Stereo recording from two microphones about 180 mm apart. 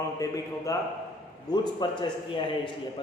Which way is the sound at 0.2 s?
20° left (ahead or behind).